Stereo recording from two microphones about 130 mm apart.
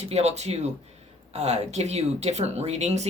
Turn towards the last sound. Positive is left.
turn(degrees=-60)  # may be behind; listen again after turning